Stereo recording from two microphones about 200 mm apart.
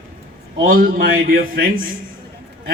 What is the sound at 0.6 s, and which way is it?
A man's voice, 45° right (ahead or behind).